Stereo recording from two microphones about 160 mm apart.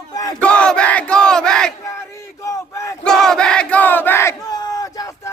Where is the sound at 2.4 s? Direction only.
20° left (ahead or behind).